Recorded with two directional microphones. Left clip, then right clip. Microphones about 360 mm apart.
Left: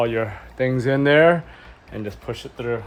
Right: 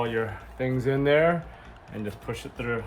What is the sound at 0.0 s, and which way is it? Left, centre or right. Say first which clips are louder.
Speech: left 6 dB; left.